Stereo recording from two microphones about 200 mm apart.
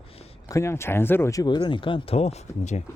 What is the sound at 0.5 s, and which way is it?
Speech, 15° left (ahead or behind).